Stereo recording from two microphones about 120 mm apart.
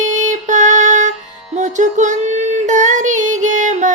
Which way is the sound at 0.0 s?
90° right.